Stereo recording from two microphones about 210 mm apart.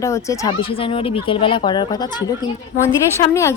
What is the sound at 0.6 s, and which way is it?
Speech, 25° left (ahead or behind).